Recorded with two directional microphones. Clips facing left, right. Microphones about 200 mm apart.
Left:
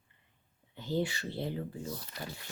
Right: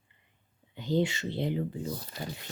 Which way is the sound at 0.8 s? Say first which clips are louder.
Right 5 dB; 20° right (ahead or behind).